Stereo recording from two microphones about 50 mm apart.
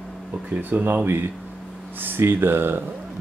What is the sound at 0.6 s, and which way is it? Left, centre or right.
Speech, right.